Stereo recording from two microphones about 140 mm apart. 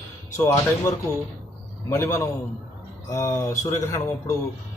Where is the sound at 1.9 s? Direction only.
20° left (ahead or behind).